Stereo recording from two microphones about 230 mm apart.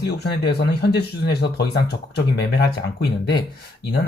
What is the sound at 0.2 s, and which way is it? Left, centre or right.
Speech, left.